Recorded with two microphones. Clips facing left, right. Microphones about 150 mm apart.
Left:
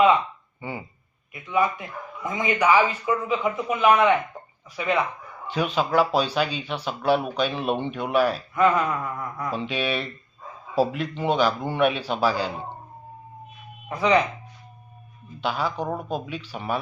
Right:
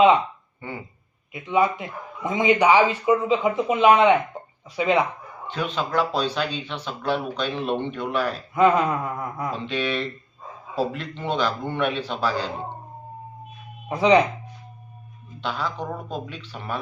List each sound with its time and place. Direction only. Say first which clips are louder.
1.3 s speech: right 2 dB; 25° right (ahead or behind)
5.5 s speech: left 3 dB; 10° left (ahead or behind)
8.5 s speech: right 4 dB; 25° right (ahead or behind)
9.6 s speech: right 2 dB; 10° left (ahead or behind)
13.8 s speech: right 3 dB; 25° right (ahead or behind)
15.4 s speech: left 2 dB; 10° left (ahead or behind)